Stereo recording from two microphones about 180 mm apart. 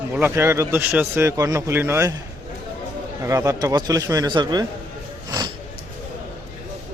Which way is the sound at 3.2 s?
15° right (ahead or behind).